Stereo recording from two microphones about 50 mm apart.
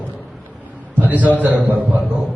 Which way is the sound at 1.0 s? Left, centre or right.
Right.